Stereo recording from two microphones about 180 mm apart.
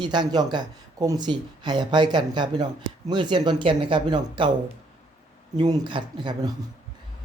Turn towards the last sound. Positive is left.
turn(degrees=-25)  # may be behind; listen again after turning